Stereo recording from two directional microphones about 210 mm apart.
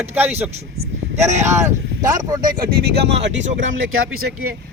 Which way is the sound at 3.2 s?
60° right (ahead or behind).